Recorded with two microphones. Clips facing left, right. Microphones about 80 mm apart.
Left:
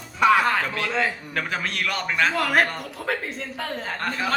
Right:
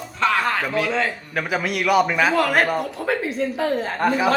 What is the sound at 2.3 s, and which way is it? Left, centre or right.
A man's voice, centre.